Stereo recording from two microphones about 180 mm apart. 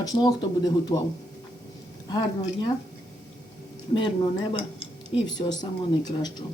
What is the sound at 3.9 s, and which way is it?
Speech, 25° left (ahead or behind).